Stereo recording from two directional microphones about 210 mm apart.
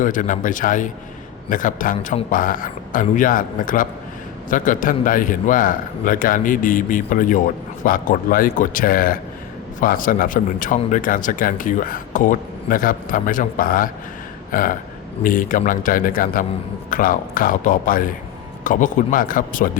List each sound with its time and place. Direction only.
0.0 s a man's voice: 40° left (ahead or behind)